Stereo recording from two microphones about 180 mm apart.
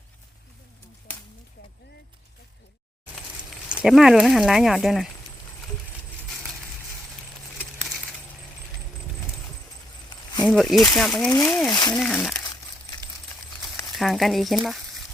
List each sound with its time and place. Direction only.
3.7 s speech: 5° right (ahead or behind)
6.2 s a sound: centre (ahead or behind)
7.9 s keys jangling: centre (ahead or behind)
10.4 s speech: centre (ahead or behind)
11.7 s speech: 25° left (ahead or behind)
11.9 s speech: 5° left (ahead or behind)
13.9 s speech: centre (ahead or behind)